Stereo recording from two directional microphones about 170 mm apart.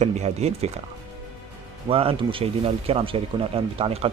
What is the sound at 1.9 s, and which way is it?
Speech, 35° right (ahead or behind).